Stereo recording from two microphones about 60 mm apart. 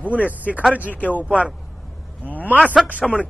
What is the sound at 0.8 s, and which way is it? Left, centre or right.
Speech, left.